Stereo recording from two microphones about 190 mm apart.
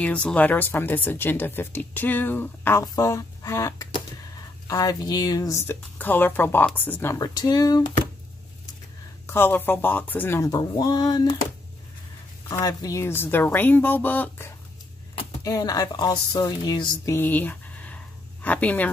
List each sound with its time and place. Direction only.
0.0 s speech: 5° left (ahead or behind)
9.3 s speech: 10° left (ahead or behind)
12.4 s speech: 20° left (ahead or behind)